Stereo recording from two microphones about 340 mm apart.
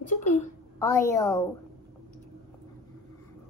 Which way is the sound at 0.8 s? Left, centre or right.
Centre.